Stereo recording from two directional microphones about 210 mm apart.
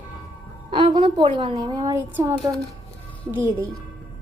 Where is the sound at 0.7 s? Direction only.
25° right (ahead or behind).